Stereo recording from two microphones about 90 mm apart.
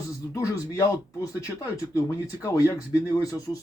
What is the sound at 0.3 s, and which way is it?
Speech, 35° left (ahead or behind).